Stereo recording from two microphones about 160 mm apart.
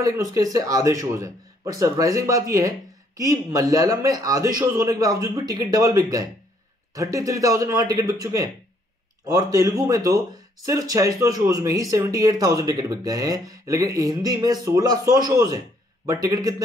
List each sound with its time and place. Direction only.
0.0 s speech: 20° right (ahead or behind)